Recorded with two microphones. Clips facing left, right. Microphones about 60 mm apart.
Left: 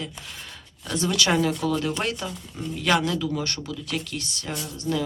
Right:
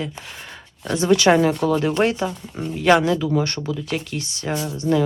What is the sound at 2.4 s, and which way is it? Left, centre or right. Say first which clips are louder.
Speech: right 5 dB; right.